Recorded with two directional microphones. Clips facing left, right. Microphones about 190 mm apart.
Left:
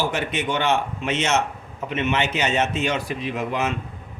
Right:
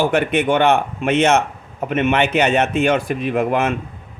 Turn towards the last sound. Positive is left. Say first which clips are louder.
# right 7 dB
turn(degrees=-55)  # may be behind; listen again after turning